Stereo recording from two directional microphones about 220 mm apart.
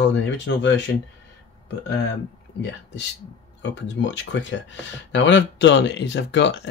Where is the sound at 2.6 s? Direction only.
55° left (ahead or behind).